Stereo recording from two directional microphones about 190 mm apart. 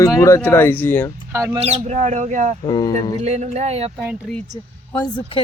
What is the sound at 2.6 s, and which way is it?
Speech, 20° left (ahead or behind).